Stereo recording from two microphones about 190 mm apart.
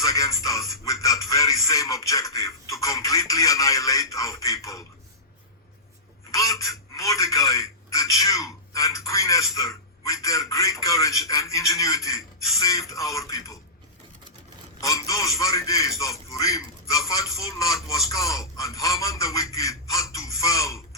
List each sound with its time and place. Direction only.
0.0 s speech: 15° left (ahead or behind)
6.3 s a man's voice: 15° left (ahead or behind)
14.8 s speech: 15° left (ahead or behind)